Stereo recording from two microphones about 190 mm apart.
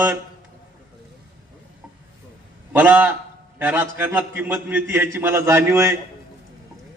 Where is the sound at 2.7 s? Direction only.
10° right (ahead or behind).